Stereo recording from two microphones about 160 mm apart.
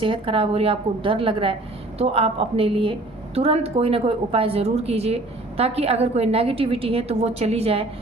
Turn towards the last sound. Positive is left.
turn(degrees=-40)  # may be behind; listen again after turning